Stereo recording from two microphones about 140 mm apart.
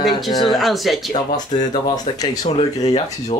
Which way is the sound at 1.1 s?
30° left (ahead or behind).